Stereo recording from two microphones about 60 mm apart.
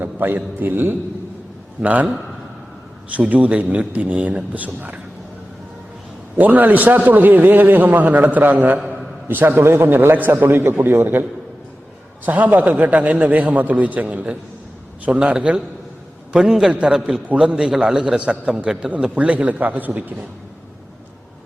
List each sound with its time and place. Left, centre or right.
0.0 s a man's voice: right
3.1 s a man's voice: right
6.3 s a man's voice: right; by 16.7 s centre
16.7 s a man's voice: centre